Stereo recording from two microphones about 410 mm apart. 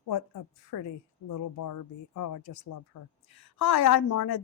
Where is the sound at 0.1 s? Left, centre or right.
Left.